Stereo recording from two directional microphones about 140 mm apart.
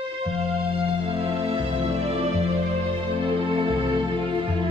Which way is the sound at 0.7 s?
40° right (ahead or behind).